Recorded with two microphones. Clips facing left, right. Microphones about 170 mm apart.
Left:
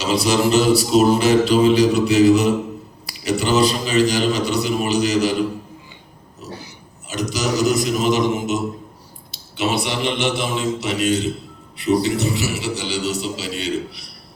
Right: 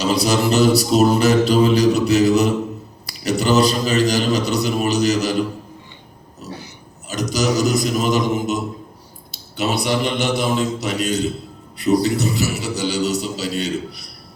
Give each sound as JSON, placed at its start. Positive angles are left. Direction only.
{"t": 0.0, "sound": "mantra", "side_deg": -40}
{"t": 7.1, "sound": "mantra", "side_deg": -40}